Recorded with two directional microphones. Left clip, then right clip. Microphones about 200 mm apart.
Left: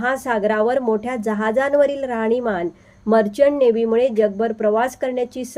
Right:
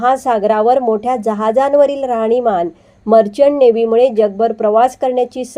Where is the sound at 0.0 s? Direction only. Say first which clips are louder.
Right 7 dB; 5° right (ahead or behind).